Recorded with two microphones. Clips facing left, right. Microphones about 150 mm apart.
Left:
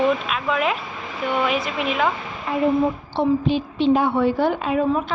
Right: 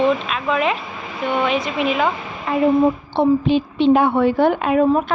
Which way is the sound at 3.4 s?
65° right (ahead or behind).